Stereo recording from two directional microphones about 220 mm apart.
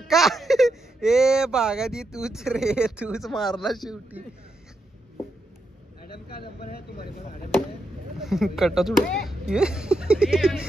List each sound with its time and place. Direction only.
0.1 s speech: centre (ahead or behind)
6.1 s a sound: 45° left (ahead or behind)
8.2 s speech: centre (ahead or behind)